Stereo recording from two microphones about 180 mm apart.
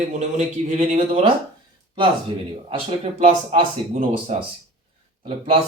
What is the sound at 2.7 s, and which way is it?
Speech, 30° right (ahead or behind).